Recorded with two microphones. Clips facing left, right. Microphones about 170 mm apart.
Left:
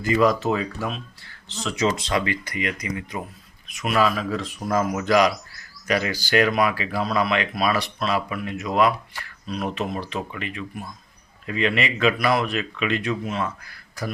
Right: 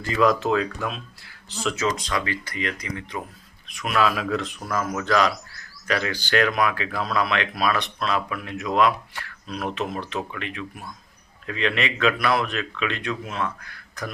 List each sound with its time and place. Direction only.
0.1 s speech: centre (ahead or behind)
1.7 s speech: 20° left (ahead or behind); by 4.5 s centre (ahead or behind)
4.9 s speech: 15° left (ahead or behind)